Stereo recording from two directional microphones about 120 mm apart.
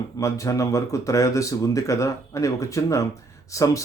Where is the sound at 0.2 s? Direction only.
25° left (ahead or behind).